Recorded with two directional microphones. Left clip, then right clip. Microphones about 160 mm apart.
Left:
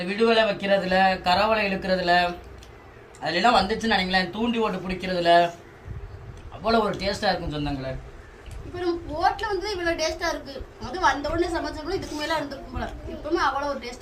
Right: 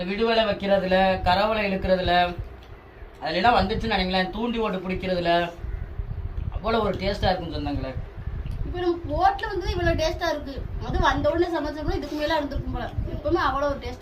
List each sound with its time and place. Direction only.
0.1 s speech: 20° left (ahead or behind)
6.6 s speech: 20° left (ahead or behind)
8.8 s a woman's voice: 20° right (ahead or behind)